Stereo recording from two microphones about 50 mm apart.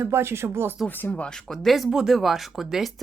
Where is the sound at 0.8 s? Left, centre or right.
Left.